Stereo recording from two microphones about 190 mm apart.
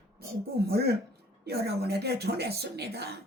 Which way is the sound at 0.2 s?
55° right (ahead or behind).